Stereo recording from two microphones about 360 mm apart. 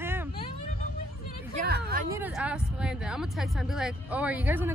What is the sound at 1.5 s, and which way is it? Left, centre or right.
Speech, right.